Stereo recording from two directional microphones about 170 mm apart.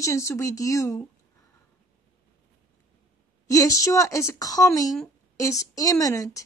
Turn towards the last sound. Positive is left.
turn(degrees=20)  # may be behind; listen again after turning